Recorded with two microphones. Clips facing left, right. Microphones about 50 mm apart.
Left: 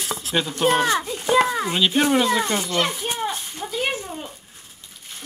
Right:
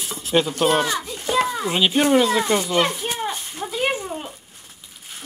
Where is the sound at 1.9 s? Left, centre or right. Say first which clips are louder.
Right 2 dB; centre.